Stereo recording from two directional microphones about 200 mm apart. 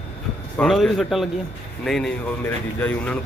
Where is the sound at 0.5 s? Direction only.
Centre (ahead or behind).